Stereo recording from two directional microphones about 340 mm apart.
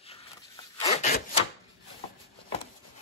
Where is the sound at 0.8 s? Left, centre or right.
Centre.